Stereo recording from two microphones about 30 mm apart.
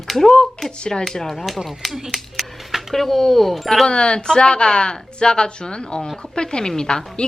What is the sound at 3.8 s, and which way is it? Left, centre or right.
Speech, left.